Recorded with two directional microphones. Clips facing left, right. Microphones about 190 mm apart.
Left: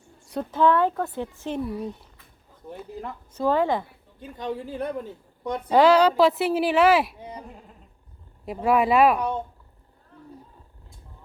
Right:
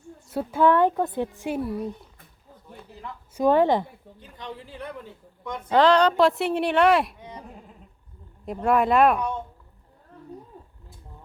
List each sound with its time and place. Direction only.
0.3 s speech: 10° right (ahead or behind)
3.3 s speech: 15° right (ahead or behind)
4.4 s speech: 45° left (ahead or behind)
5.7 s speech: 10° left (ahead or behind)
7.2 s sheep: 30° left (ahead or behind)
8.4 s speech: 5° left (ahead or behind)